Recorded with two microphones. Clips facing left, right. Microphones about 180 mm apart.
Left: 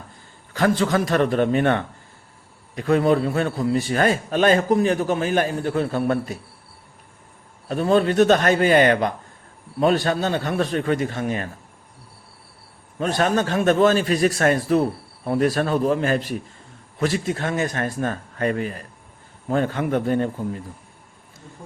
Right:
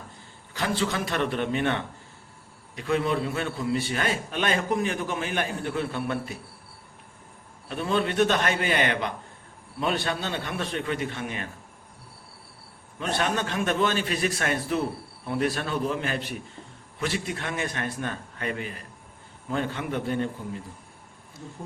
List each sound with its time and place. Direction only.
0.5 s a man's voice: 45° left (ahead or behind)
7.7 s a man's voice: 40° left (ahead or behind)
13.0 s a man's voice: 40° left (ahead or behind)